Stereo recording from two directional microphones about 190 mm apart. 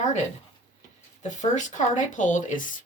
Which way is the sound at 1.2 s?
40° left (ahead or behind).